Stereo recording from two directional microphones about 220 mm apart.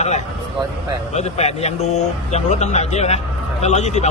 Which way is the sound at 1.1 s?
30° left (ahead or behind).